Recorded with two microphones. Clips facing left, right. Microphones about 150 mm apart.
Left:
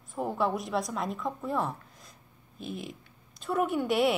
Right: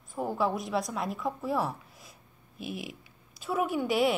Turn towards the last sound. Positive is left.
turn(degrees=0)  # may be behind; listen again after turning